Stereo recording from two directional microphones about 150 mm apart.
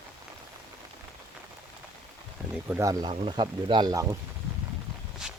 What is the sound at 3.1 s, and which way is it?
Speech, 35° right (ahead or behind).